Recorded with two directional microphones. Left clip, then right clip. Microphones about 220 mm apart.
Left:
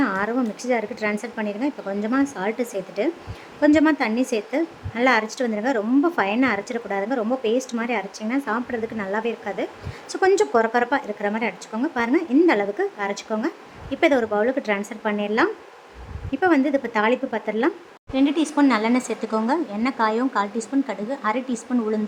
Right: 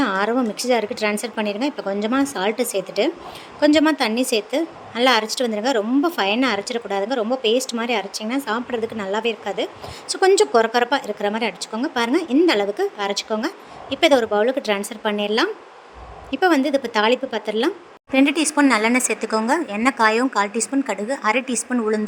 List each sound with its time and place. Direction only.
0.0 s a woman's voice: 25° right (ahead or behind)